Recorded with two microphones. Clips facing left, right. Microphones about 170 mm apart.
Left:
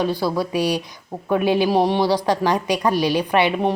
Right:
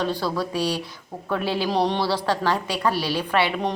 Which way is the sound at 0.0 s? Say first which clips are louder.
Left 4 dB; 10° left (ahead or behind).